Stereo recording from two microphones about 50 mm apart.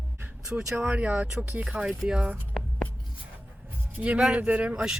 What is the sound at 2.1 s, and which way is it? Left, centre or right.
Speech, centre.